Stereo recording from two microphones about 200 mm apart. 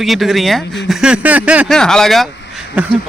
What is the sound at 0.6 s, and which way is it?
Speech, 60° left (ahead or behind).